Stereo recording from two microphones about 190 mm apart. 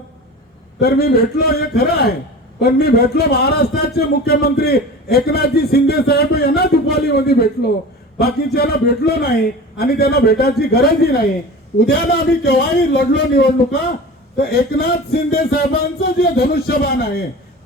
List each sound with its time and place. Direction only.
0.8 s a man's voice: 55° left (ahead or behind)
8.5 s a man's voice: 55° left (ahead or behind)